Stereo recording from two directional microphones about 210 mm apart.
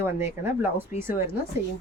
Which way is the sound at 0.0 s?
10° right (ahead or behind).